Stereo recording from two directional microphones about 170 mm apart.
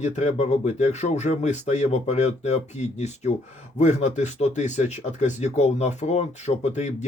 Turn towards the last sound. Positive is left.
turn(degrees=40)  # may be behind; listen again after turning